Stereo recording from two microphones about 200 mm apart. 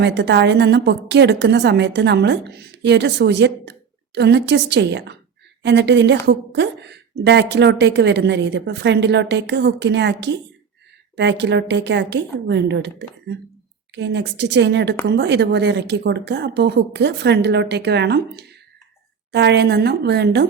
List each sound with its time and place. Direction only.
0.0 s a woman's voice: 60° right (ahead or behind)